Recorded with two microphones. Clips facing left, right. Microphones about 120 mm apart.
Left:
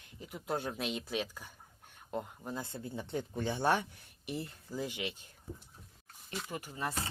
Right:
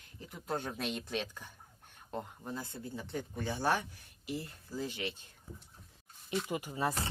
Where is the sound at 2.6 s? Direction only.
25° left (ahead or behind).